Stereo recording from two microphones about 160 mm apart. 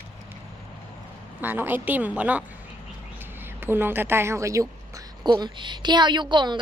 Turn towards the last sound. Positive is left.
turn(degrees=-30)  # may be behind; listen again after turning